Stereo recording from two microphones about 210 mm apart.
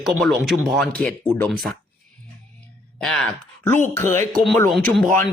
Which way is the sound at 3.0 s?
Centre (ahead or behind).